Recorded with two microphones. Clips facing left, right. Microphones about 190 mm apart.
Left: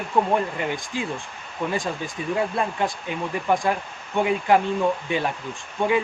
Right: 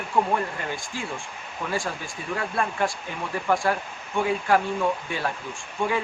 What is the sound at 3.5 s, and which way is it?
Speech, 20° left (ahead or behind).